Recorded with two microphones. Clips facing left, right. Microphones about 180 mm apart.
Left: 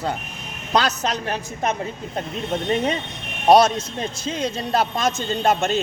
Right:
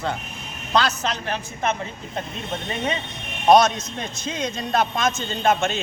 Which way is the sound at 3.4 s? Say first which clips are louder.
Left 1 dB; 35° left (ahead or behind).